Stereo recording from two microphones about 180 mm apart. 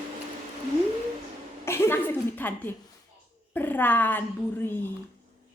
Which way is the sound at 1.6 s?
15° left (ahead or behind).